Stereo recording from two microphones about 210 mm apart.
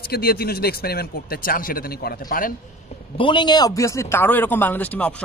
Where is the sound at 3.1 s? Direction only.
25° left (ahead or behind).